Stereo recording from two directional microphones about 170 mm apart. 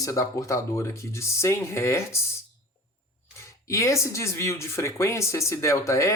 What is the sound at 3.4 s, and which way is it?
Speech, 15° left (ahead or behind).